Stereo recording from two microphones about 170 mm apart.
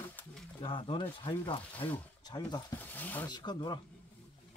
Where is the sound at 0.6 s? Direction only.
30° left (ahead or behind).